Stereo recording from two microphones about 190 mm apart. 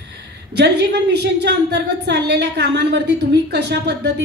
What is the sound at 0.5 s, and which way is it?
A woman's voice, 60° right (ahead or behind).